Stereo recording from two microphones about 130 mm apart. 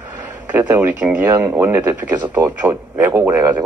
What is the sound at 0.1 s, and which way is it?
Speech, 15° right (ahead or behind).